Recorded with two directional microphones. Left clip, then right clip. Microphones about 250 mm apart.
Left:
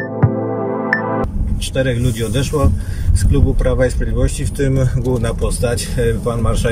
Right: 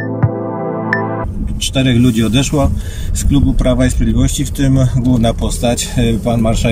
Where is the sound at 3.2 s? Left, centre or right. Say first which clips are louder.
Right 4 dB; centre.